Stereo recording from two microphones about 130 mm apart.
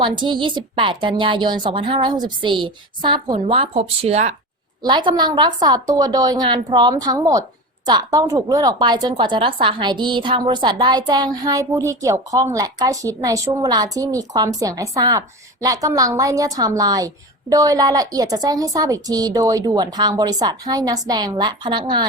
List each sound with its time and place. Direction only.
0.0 s a woman's voice: 35° right (ahead or behind); by 4.4 s 55° right (ahead or behind)
4.8 s a woman's voice: 35° right (ahead or behind)